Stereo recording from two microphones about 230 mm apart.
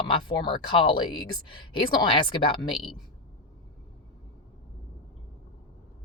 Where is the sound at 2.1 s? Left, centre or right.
Left.